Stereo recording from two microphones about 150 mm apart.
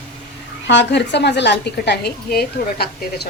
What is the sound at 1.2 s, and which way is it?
A woman's voice, 90° left.